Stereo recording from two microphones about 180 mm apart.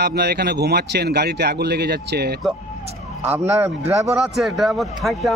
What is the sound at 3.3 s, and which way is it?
A man's voice, 10° right (ahead or behind).